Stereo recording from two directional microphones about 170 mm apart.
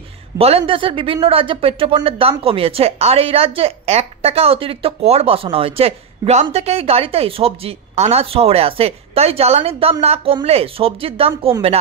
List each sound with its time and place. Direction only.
0.4 s speech: 35° right (ahead or behind)